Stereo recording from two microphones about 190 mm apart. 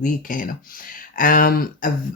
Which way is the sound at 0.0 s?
45° left (ahead or behind).